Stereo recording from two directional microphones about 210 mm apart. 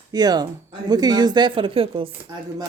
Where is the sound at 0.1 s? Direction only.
20° right (ahead or behind).